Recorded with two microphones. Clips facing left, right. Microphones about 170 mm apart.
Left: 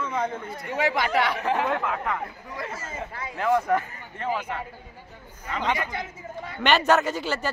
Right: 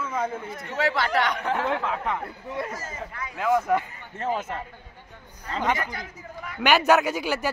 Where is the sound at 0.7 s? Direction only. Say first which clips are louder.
Left 1 dB; 15° left (ahead or behind).